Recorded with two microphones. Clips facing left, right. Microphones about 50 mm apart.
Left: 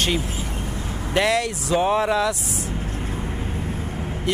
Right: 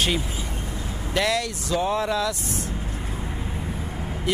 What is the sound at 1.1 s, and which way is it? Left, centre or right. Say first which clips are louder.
Speech: left 3 dB; centre.